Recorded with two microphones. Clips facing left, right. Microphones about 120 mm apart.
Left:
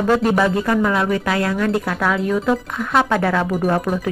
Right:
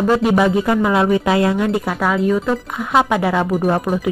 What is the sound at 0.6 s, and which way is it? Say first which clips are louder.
Speech: right 3 dB; 20° right (ahead or behind).